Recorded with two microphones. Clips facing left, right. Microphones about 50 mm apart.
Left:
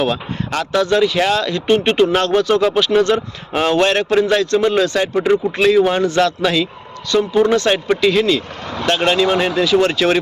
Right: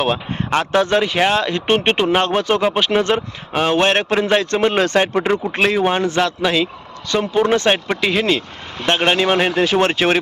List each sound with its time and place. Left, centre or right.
0.0 s speech: right
5.1 s speech: right
8.2 s speech: right